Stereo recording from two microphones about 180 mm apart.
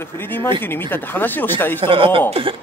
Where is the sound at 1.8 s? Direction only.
30° right (ahead or behind).